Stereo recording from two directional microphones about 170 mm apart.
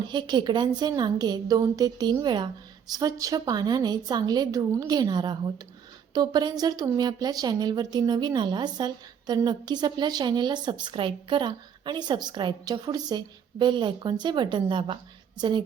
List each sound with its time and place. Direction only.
0.0 s a woman's voice: 25° right (ahead or behind)